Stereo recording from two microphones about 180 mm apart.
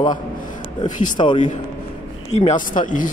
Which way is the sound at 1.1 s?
25° left (ahead or behind).